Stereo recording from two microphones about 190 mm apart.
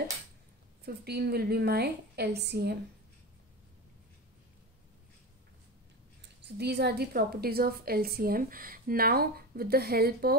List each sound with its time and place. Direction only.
0.8 s a woman's voice: 55° right (ahead or behind)
6.4 s a woman's voice: 60° right (ahead or behind)